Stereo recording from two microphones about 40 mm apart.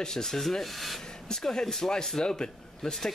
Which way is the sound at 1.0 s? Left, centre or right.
Centre.